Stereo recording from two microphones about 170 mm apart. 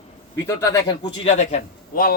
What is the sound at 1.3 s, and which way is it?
Speech, 40° left (ahead or behind).